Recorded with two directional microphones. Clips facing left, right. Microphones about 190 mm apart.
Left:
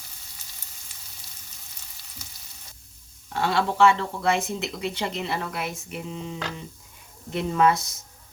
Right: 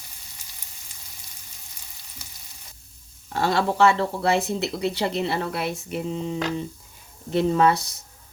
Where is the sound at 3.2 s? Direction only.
40° right (ahead or behind).